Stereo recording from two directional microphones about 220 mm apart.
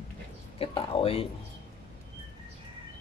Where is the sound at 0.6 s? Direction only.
25° left (ahead or behind).